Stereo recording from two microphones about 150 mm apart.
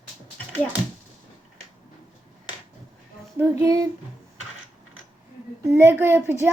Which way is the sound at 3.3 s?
20° right (ahead or behind).